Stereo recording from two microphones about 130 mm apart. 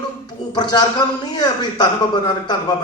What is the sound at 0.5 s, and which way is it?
A man's voice, 35° left (ahead or behind).